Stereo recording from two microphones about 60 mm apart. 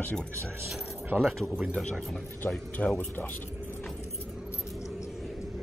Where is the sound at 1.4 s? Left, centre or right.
Centre.